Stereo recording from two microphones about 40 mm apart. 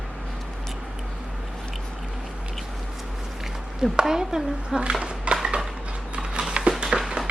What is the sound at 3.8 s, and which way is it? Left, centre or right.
A woman's voice, centre.